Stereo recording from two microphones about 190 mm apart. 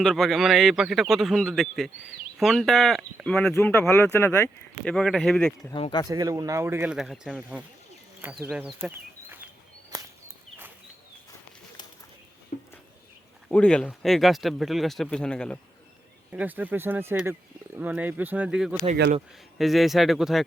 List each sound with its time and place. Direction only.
0.0 s speech: centre (ahead or behind)
5.7 s speech: 25° left (ahead or behind)
6.1 s speech: 20° right (ahead or behind)
9.9 s walk: 15° right (ahead or behind)
13.5 s speech: 5° left (ahead or behind)
16.3 s speech: 10° right (ahead or behind)